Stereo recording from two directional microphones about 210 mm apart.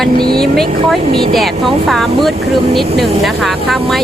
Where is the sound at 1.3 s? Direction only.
Centre (ahead or behind).